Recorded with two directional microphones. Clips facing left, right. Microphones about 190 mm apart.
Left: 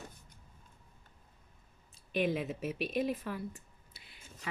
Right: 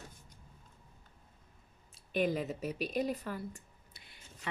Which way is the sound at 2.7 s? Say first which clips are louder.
Left 1 dB; 40° right (ahead or behind).